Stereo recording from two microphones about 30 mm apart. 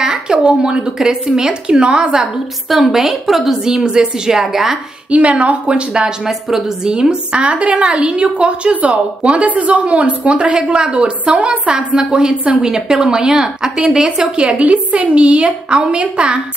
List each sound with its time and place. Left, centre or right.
0.0 s a sound: right
0.4 s a woman's voice: right
2.7 s a woman's voice: centre
3.6 s a woman's voice: right
5.1 s speech: right
5.7 s a woman's voice: right
7.3 s a woman's voice: right
11.0 s a woman's voice: right
12.4 s a woman's voice: right
14.2 s a woman's voice: right